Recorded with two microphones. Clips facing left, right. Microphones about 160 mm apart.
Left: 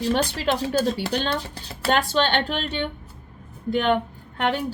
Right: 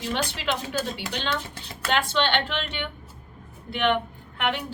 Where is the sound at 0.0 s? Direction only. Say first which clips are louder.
Left 6 dB; 40° left (ahead or behind).